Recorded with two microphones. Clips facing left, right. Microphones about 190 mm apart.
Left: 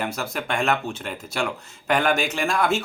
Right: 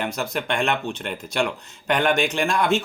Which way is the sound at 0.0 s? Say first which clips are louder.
Right 2 dB; 5° left (ahead or behind).